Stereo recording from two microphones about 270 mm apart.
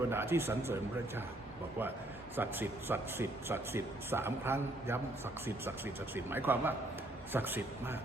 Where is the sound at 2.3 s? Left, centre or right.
Centre.